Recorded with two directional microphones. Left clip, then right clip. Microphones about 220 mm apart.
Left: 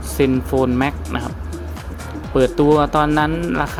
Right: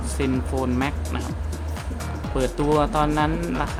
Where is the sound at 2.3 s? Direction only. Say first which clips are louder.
Left 7 dB; 25° left (ahead or behind).